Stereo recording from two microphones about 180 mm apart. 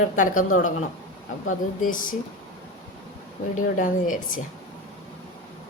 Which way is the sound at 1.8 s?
50° left (ahead or behind).